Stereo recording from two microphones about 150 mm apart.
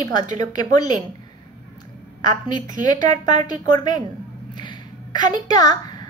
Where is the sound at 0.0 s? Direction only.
25° left (ahead or behind).